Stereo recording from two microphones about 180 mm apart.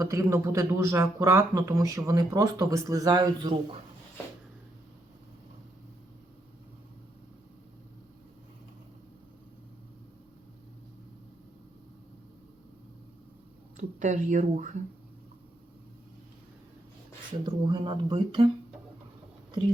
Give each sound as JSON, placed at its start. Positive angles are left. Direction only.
{"t": 0.0, "sound": "speech", "side_deg": -15}
{"t": 13.7, "sound": "speech", "side_deg": -45}
{"t": 17.4, "sound": "speech", "side_deg": -25}